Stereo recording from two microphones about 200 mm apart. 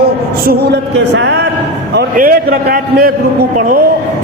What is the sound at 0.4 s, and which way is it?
A man's voice, 55° right (ahead or behind).